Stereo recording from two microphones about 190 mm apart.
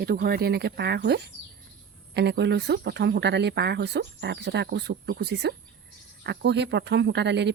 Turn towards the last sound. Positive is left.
turn(degrees=-65)  # may be behind; listen again after turning